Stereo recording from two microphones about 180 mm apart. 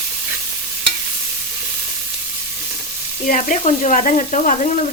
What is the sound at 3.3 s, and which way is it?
Sizzle, 45° left (ahead or behind).